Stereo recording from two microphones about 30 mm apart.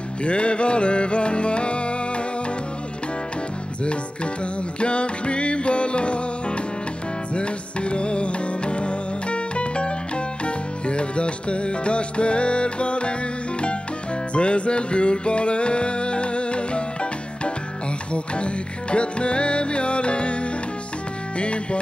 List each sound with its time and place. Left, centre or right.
0.2 s music: left
4.7 s music: left
14.3 s music: left
18.1 s music: left